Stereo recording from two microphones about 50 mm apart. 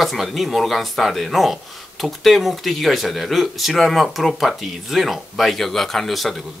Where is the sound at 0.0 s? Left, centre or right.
Centre.